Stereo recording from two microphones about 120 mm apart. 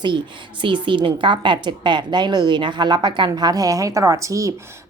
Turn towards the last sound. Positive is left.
turn(degrees=-25)  # may be behind; listen again after turning